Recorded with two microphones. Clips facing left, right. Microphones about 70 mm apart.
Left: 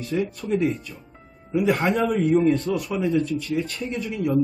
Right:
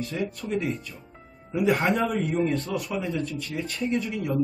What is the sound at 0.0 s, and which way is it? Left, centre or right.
Speech, centre.